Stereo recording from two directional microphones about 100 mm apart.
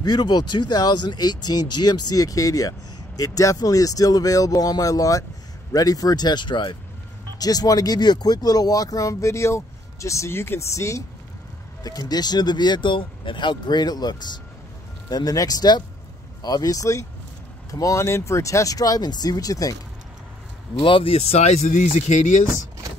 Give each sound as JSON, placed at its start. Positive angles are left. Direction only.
{"t": 0.0, "sound": "speech", "side_deg": 45}
{"t": 7.3, "sound": "speech", "side_deg": 40}
{"t": 20.8, "sound": "speech", "side_deg": 65}